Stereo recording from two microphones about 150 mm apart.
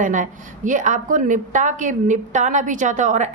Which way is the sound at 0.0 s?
60° right (ahead or behind).